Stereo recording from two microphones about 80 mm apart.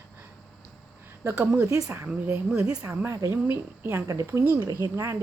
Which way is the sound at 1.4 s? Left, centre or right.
Right.